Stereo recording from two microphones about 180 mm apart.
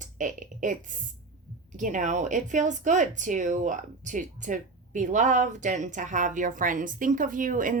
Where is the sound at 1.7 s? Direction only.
45° right (ahead or behind).